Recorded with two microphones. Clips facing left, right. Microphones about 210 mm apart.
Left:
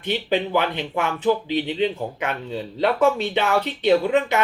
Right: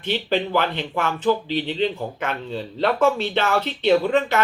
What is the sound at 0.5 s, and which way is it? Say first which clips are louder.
Speech: even; 5° left (ahead or behind).